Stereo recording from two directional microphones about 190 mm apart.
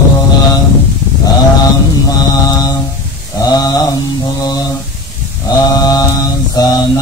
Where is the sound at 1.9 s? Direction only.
20° left (ahead or behind).